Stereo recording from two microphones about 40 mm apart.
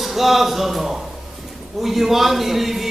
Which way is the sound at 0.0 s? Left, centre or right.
Centre.